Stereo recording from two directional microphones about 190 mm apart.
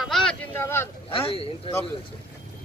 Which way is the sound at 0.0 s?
Centre (ahead or behind).